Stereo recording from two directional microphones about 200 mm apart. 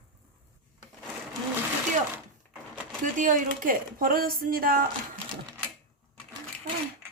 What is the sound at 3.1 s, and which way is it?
Speech, 40° right (ahead or behind).